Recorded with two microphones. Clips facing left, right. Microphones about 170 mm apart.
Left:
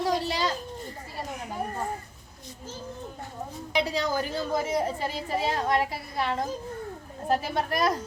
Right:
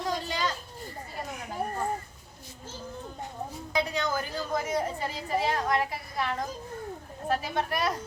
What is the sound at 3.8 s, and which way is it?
A woman's voice, 30° left (ahead or behind).